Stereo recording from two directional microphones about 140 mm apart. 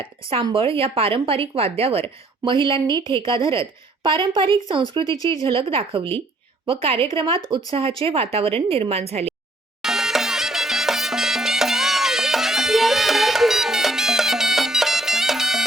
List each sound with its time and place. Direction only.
0.0 s speech: 40° right (ahead or behind)
5.1 s speech: 25° left (ahead or behind)
5.5 s a woman's voice: 40° right (ahead or behind)
9.8 s music: 5° right (ahead or behind)